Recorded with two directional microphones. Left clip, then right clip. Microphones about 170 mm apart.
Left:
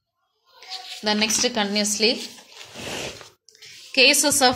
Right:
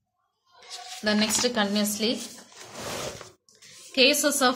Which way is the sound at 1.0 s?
5° left (ahead or behind).